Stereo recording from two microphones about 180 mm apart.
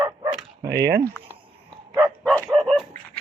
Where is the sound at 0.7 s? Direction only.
65° right (ahead or behind).